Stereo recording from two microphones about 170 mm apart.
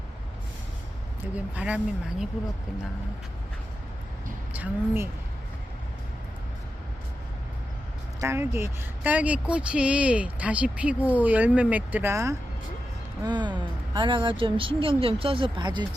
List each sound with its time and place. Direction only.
1.5 s speech: 5° right (ahead or behind)
4.5 s speech: 10° right (ahead or behind)
8.2 s speech: 15° right (ahead or behind)